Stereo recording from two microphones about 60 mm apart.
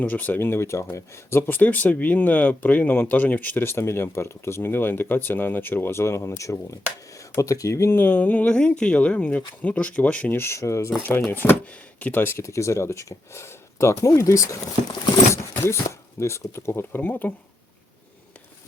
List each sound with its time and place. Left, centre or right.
0.1 s speech: left
1.5 s speech: left
7.9 s speech: left
10.3 s speech: left
11.3 s speech: left
11.6 s speech: left
12.1 s speech: left
12.4 s speech: left
16.9 s speech: left